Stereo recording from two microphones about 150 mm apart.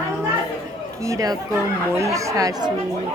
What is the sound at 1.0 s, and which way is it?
Speech, 20° right (ahead or behind).